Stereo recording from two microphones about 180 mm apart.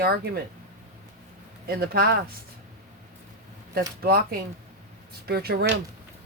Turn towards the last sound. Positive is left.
turn(degrees=-60)  # may be behind; listen again after turning